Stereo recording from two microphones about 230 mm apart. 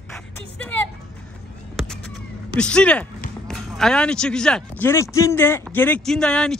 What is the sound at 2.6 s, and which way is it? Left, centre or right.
Speech, centre.